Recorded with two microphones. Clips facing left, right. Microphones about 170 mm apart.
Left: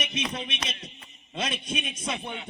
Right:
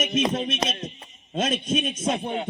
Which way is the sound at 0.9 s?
40° right (ahead or behind).